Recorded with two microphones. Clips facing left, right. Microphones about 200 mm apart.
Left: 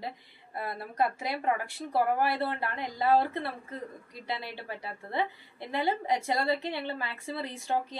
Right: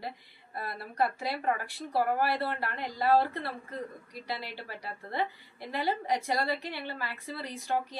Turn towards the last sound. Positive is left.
turn(degrees=25)  # may be behind; listen again after turning